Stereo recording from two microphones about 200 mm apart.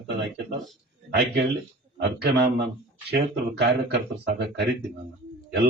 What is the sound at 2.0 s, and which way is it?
Speech, 60° right (ahead or behind).